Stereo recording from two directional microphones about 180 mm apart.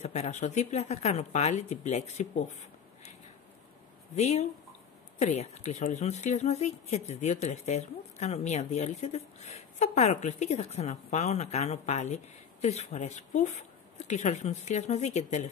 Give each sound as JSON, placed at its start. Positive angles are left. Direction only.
{"t": 0.0, "sound": "speech", "side_deg": 40}
{"t": 4.1, "sound": "speech", "side_deg": 40}